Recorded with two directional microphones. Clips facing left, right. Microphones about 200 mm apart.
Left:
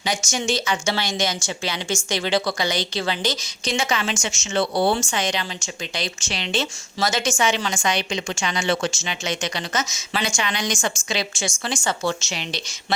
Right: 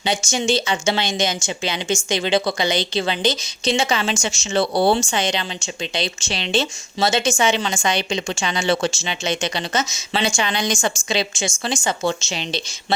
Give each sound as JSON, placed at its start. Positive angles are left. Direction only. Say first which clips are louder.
{"t": 0.0, "sound": "speech", "louder": "right 3 dB", "side_deg": -30}